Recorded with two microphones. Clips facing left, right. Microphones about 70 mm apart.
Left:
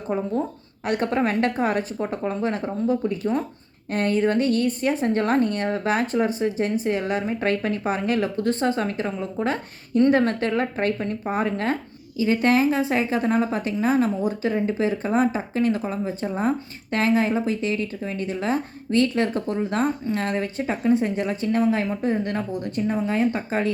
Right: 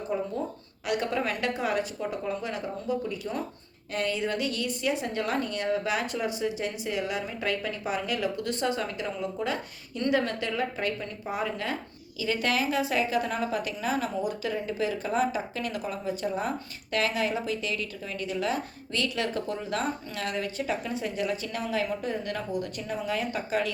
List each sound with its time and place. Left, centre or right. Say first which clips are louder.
0.1 s a woman's voice: left 6 dB; left